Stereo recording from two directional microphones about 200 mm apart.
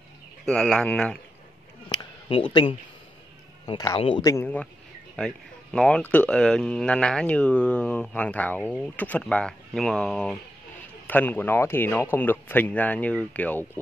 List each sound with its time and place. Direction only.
0.5 s speech: 5° left (ahead or behind)
1.9 s a sound: 25° left (ahead or behind)
3.6 s speech: 20° left (ahead or behind)